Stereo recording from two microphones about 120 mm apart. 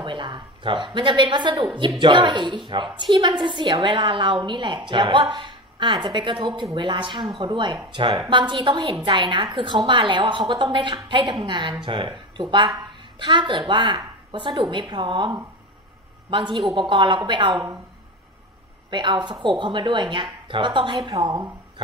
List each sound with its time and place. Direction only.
0.0 s a woman's voice: 40° right (ahead or behind)
18.9 s a woman's voice: 40° right (ahead or behind)